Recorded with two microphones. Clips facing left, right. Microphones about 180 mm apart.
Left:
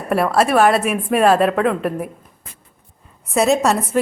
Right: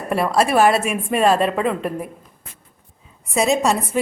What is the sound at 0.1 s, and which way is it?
A woman's voice, centre (ahead or behind).